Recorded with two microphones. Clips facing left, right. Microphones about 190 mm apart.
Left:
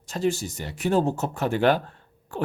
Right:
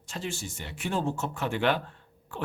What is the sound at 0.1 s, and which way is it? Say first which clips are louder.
Speech: left 10 dB; 40° left (ahead or behind).